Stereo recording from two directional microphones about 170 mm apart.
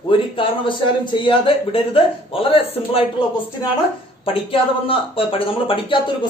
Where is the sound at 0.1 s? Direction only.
30° left (ahead or behind).